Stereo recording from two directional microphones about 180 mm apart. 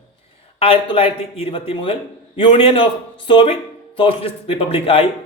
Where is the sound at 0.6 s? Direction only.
30° left (ahead or behind).